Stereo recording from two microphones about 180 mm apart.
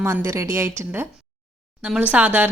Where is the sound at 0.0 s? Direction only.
15° right (ahead or behind).